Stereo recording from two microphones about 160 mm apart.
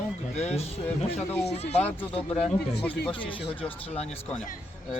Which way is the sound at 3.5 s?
35° left (ahead or behind).